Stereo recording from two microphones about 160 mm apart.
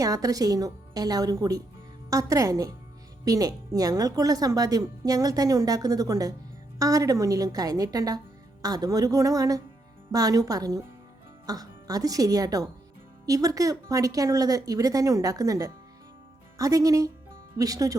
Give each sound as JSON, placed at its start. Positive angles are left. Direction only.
{"t": 0.0, "sound": "speech", "side_deg": -20}